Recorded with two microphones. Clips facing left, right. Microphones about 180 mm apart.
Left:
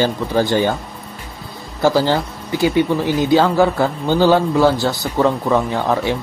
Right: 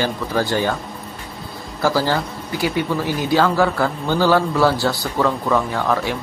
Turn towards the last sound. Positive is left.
turn(degrees=20)  # may be behind; listen again after turning